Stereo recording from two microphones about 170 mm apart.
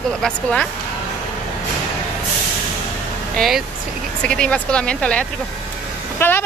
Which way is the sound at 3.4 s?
Centre (ahead or behind).